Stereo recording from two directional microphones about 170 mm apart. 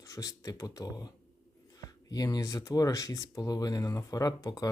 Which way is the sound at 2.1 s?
20° left (ahead or behind).